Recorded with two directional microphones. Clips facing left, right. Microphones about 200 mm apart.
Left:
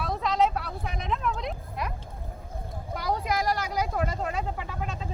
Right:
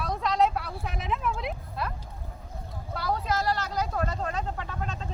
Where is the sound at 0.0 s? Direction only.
Centre (ahead or behind).